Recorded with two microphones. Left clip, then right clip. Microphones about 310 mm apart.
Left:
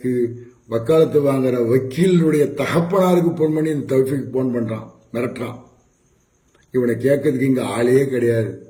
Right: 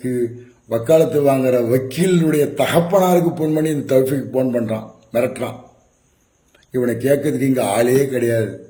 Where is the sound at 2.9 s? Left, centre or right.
Right.